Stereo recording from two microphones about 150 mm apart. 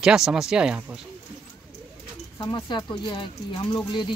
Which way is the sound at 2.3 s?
30° left (ahead or behind).